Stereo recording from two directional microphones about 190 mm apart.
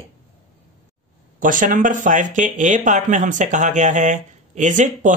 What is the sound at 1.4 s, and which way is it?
Speech, 45° right (ahead or behind).